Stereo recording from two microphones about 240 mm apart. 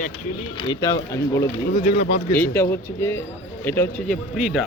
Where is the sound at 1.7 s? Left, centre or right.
Left.